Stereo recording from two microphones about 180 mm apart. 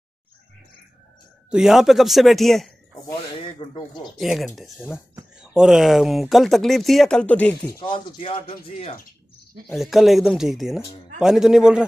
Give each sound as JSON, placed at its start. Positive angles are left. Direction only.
{"t": 1.5, "sound": "speech", "side_deg": -5}
{"t": 3.1, "sound": "a sound", "side_deg": 25}
{"t": 4.2, "sound": "speech", "side_deg": 0}
{"t": 7.8, "sound": "speech", "side_deg": 30}
{"t": 9.7, "sound": "speech", "side_deg": 0}